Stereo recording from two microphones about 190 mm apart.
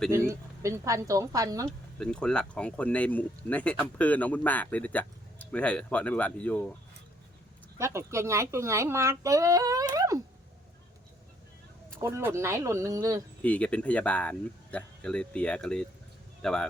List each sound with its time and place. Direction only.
0.1 s speech: 15° right (ahead or behind)
2.0 s speech: 5° left (ahead or behind)
7.8 s speech: 15° right (ahead or behind)
9.9 s a sound: 20° right (ahead or behind)
12.0 s speech: 15° right (ahead or behind)
13.4 s speech: 5° left (ahead or behind)